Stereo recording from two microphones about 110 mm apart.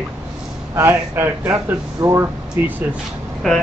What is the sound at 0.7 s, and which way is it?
A man's voice, 20° right (ahead or behind).